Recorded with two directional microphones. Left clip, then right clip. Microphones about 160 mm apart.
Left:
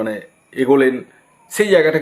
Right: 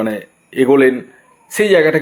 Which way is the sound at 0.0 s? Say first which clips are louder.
Right 3 dB; 25° right (ahead or behind).